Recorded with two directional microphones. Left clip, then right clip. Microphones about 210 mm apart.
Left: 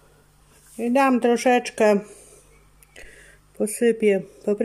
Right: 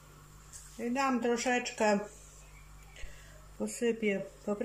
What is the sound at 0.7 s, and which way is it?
Speech, 50° left (ahead or behind).